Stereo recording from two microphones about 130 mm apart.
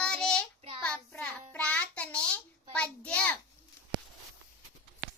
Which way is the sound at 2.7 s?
10° left (ahead or behind).